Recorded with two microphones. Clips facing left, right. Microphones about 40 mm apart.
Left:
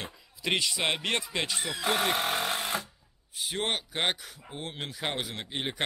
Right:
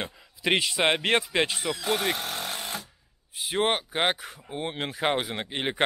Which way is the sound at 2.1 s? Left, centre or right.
Centre.